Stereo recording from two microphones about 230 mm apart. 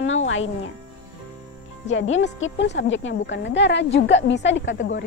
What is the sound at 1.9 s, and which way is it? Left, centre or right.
Speech, left.